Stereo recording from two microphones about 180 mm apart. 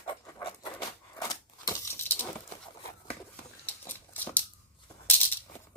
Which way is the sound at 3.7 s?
10° left (ahead or behind).